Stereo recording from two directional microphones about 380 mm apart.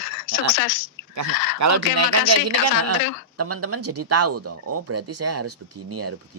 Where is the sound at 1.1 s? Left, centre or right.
Right.